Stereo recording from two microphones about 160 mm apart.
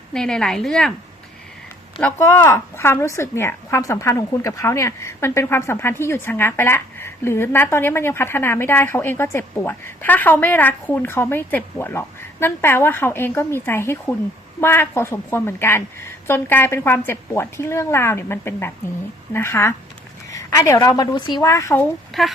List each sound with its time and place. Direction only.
0.1 s speech: 5° left (ahead or behind)
2.1 s a woman's voice: 15° left (ahead or behind)
22.1 s speech: centre (ahead or behind)